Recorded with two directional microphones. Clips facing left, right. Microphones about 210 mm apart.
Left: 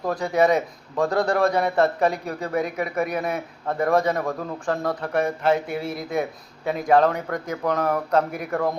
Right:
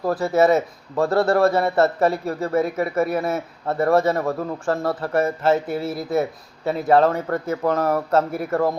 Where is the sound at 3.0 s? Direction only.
30° right (ahead or behind).